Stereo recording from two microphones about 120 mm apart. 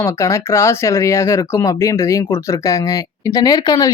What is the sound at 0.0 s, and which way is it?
Speech, 25° left (ahead or behind).